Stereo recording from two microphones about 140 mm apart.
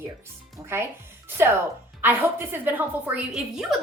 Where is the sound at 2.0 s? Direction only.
15° right (ahead or behind).